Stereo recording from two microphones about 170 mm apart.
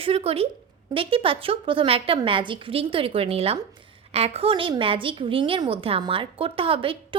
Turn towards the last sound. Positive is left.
turn(degrees=-30)  # may be behind; listen again after turning